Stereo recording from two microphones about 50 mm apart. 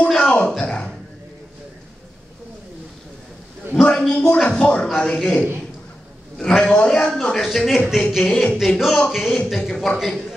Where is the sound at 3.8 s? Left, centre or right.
Centre.